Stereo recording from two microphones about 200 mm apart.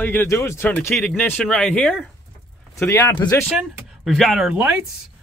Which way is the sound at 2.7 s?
15° left (ahead or behind).